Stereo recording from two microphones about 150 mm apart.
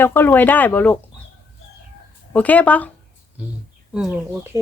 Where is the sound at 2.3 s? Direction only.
10° left (ahead or behind).